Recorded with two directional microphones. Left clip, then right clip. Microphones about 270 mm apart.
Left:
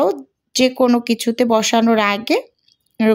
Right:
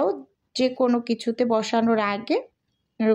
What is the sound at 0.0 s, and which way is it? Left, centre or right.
A woman's voice, left.